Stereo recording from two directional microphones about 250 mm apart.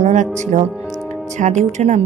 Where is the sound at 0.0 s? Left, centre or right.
Right.